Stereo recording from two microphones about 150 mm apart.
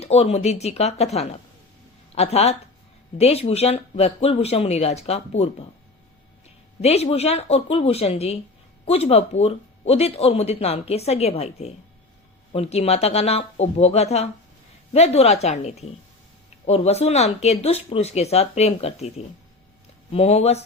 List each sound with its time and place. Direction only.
0.0 s speech: 45° left (ahead or behind)
6.8 s speech: 45° left (ahead or behind)